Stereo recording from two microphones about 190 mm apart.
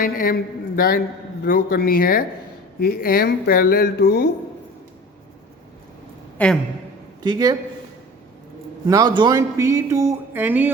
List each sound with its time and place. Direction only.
0.0 s speech: 50° left (ahead or behind)
6.4 s a man's voice: 5° left (ahead or behind)
7.2 s speech: 20° right (ahead or behind)
8.9 s speech: 20° right (ahead or behind)